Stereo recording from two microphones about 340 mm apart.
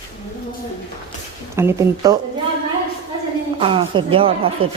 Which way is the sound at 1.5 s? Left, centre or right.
Centre.